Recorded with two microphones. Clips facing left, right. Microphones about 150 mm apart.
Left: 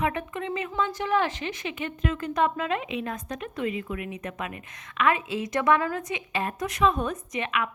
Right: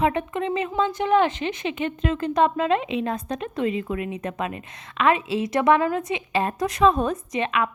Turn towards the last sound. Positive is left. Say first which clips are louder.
# right 5 dB
turn(degrees=-30)  # may be behind; listen again after turning